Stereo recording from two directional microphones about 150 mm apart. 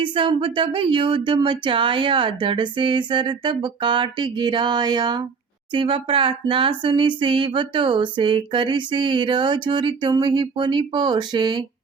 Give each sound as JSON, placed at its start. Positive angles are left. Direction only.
{"t": 0.0, "sound": "speech", "side_deg": -35}